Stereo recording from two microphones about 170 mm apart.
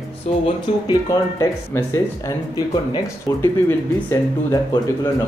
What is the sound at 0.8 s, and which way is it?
Speech, 20° left (ahead or behind).